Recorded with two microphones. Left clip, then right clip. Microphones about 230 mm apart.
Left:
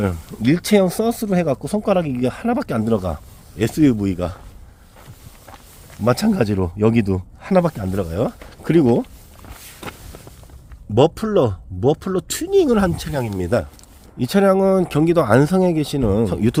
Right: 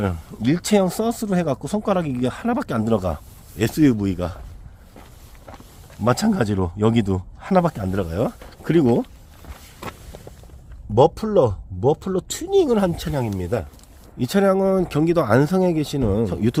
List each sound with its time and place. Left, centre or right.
0.0 s speech: centre
6.0 s speech: centre
10.9 s speech: left
14.2 s speech: centre